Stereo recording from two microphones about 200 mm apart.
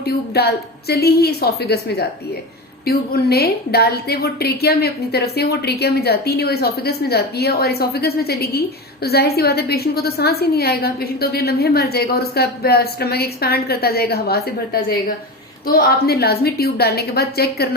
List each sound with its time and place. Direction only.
0.0 s a woman's voice: 55° left (ahead or behind)